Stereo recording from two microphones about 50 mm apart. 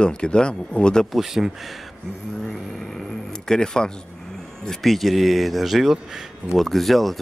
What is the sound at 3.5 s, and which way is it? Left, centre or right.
A man's voice, centre.